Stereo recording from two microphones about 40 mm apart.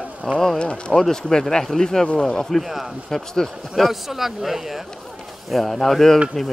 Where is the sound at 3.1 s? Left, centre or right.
Centre.